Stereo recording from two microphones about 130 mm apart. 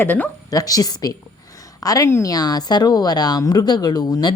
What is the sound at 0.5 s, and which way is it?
A woman's voice, 30° left (ahead or behind).